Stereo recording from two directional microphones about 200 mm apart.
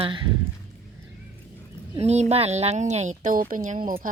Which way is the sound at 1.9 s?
35° right (ahead or behind).